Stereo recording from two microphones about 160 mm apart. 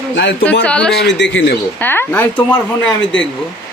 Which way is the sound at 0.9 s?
90° left.